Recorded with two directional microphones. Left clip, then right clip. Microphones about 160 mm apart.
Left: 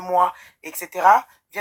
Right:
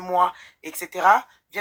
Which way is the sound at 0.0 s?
25° right (ahead or behind).